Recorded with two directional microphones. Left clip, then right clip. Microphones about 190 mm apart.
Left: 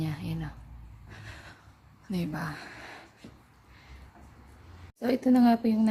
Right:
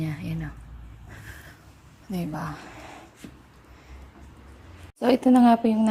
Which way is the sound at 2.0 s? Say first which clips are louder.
Right 2 dB; 15° left (ahead or behind).